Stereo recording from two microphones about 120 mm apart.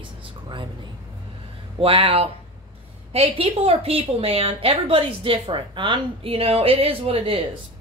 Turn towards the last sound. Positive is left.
turn(degrees=-50)  # may be behind; listen again after turning